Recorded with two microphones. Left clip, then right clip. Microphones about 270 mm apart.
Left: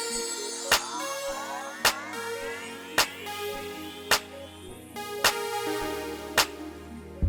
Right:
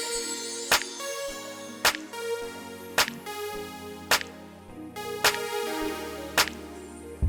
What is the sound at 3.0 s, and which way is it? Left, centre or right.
Music, centre.